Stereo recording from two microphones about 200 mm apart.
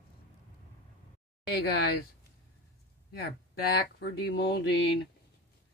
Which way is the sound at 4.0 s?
55° left (ahead or behind).